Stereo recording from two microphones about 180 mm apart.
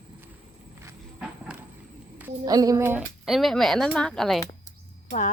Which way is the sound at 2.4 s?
20° right (ahead or behind).